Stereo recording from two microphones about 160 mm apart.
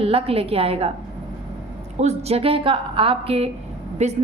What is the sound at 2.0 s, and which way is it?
Speech, 40° right (ahead or behind).